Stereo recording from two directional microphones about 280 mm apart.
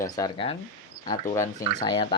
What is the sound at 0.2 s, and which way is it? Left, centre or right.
Speech, centre.